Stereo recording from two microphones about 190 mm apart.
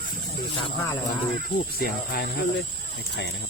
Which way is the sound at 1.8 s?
55° left (ahead or behind).